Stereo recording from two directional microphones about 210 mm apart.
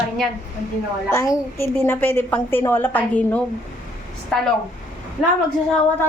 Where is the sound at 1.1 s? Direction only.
15° left (ahead or behind).